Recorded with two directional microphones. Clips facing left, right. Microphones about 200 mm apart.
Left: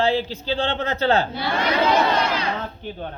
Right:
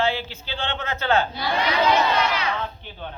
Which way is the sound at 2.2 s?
40° left (ahead or behind).